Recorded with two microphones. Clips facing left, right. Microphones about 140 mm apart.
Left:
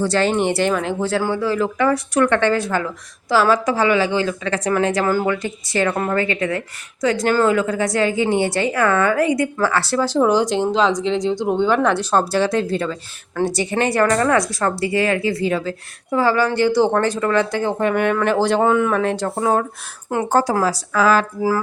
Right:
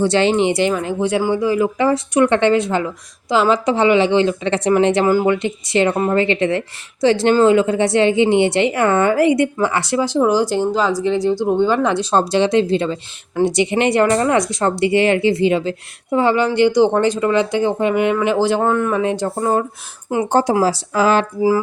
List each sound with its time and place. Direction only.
0.0 s a woman's voice: 25° right (ahead or behind)
0.3 s a woman's voice: 15° right (ahead or behind)
18.6 s speech: centre (ahead or behind)
20.3 s a woman's voice: 25° right (ahead or behind)